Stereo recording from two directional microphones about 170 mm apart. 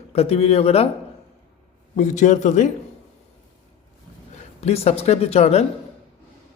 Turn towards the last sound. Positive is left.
turn(degrees=40)  # may be behind; listen again after turning